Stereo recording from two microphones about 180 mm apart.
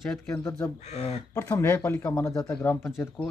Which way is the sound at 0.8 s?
40° left (ahead or behind).